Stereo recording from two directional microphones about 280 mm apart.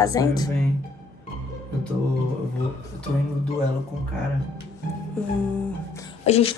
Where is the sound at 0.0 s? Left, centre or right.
Centre.